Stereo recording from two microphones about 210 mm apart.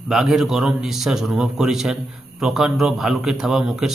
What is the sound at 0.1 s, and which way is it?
A man's voice, centre (ahead or behind).